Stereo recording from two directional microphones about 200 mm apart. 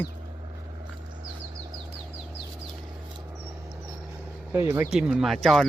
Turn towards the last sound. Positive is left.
turn(degrees=0)  # may be behind; listen again after turning